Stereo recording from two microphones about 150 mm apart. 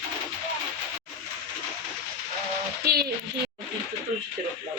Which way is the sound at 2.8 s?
90° right.